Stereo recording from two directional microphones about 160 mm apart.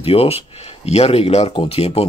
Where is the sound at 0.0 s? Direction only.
35° left (ahead or behind).